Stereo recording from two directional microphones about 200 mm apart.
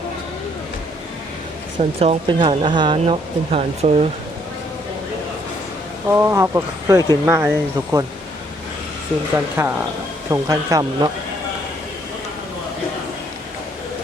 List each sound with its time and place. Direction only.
2.0 s speech: 25° right (ahead or behind)
6.1 s speech: 15° right (ahead or behind)
9.3 s speech: 10° right (ahead or behind)